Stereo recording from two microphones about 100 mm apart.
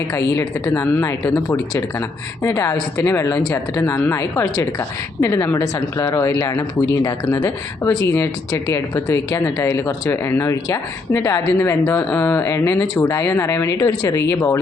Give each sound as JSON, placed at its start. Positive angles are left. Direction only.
{"t": 0.1, "sound": "speech", "side_deg": 30}
{"t": 1.5, "sound": "speech", "side_deg": 30}